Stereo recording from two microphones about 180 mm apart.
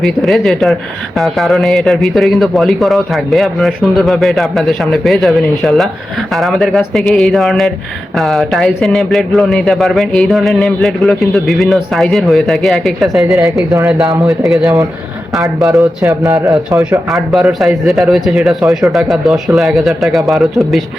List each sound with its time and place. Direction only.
0.0 s speech: centre (ahead or behind)
13.4 s a man's voice: 15° right (ahead or behind)
14.2 s speech: centre (ahead or behind)
14.6 s a man's voice: 15° right (ahead or behind)
16.0 s a man's voice: 15° right (ahead or behind)
17.2 s speech: centre (ahead or behind)